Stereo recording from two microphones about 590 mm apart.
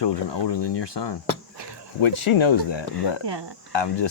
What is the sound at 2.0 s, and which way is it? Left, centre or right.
Speech, left.